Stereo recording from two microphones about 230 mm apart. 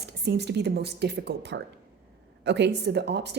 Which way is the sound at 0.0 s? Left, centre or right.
Right.